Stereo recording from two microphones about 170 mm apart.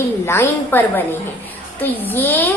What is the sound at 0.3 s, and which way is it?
A woman's voice, 15° left (ahead or behind).